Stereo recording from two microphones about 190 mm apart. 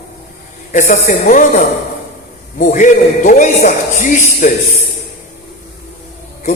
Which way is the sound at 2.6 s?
40° left (ahead or behind).